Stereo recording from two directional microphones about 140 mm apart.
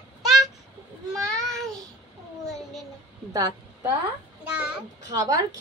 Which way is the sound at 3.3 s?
25° right (ahead or behind).